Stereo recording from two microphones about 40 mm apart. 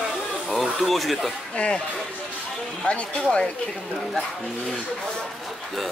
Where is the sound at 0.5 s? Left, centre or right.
Centre.